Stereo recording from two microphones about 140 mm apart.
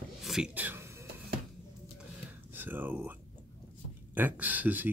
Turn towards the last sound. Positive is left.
turn(degrees=-10)  # may be behind; listen again after turning